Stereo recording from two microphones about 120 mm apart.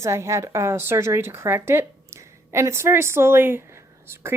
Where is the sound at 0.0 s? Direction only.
25° right (ahead or behind).